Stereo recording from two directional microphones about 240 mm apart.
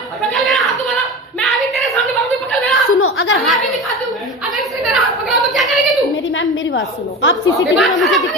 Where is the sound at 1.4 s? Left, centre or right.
Centre.